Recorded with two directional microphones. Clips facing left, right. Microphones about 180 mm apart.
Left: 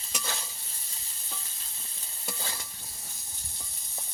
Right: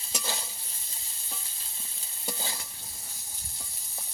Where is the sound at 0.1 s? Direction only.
15° right (ahead or behind).